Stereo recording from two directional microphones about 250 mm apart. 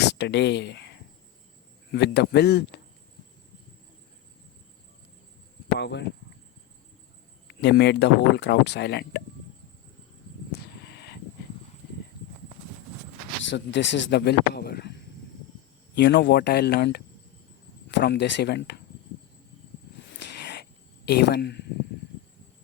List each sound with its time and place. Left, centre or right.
0.0 s speech: left
5.8 s speech: left
7.4 s speech: left
10.5 s a sound: left
13.4 s speech: left
20.0 s a sound: left
21.1 s speech: left